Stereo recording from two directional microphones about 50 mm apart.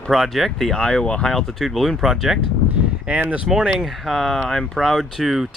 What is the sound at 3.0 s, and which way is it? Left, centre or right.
Speech, right.